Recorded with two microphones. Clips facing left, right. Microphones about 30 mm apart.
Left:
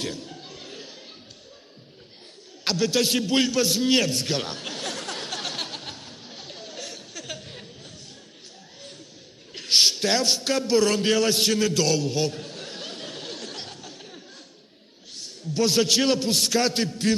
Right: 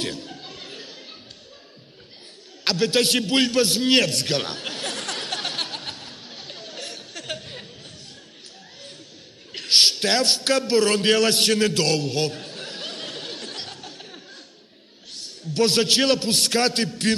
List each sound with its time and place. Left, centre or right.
0.0 s speech: right
0.3 s music: right
2.6 s a man's voice: right
4.0 s a man's voice: right
4.3 s speech: right
4.9 s a sound: right
9.6 s a sound: right
10.6 s a man's voice: right
11.0 s a man's voice: right
13.2 s a sound: right
15.5 s a man's voice: right